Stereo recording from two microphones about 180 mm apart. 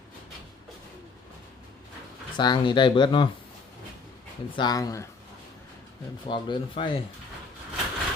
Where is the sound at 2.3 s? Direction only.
25° left (ahead or behind).